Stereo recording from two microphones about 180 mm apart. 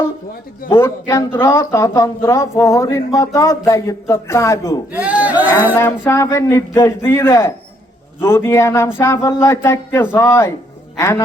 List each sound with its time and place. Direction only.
0.7 s speech: 15° left (ahead or behind)
4.9 s speech: 10° right (ahead or behind)
5.7 s a man's voice: 15° left (ahead or behind)